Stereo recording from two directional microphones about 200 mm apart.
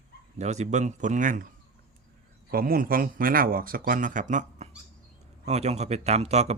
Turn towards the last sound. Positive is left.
turn(degrees=-30)  # may be behind; listen again after turning